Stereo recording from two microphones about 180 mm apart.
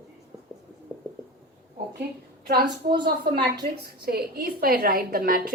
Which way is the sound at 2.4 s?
60° right (ahead or behind).